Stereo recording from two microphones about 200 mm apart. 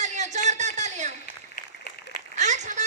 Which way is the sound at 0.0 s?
35° right (ahead or behind).